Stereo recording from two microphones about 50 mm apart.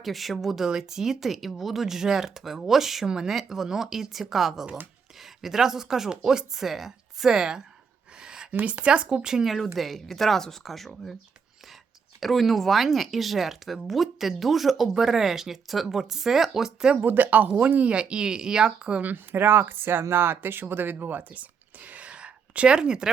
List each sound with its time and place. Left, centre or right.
0.0 s speech: centre
8.2 s a sound: centre
8.6 s speech: right; by 11.1 s centre
12.2 s speech: centre
17.0 s speech: right
17.9 s speech: centre
19.0 s speech: right; by 23.0 s centre